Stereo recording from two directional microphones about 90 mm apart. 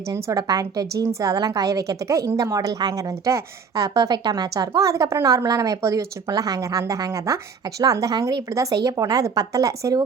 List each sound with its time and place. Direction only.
0.1 s a woman's voice: 45° right (ahead or behind)